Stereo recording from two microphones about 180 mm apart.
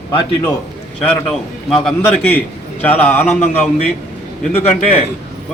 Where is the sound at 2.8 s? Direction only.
10° left (ahead or behind).